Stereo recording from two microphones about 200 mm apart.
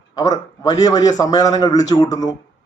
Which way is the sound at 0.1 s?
20° left (ahead or behind).